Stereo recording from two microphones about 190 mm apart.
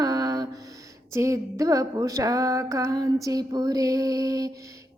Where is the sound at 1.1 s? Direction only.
15° right (ahead or behind).